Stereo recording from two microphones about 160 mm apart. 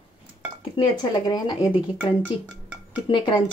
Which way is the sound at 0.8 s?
25° left (ahead or behind).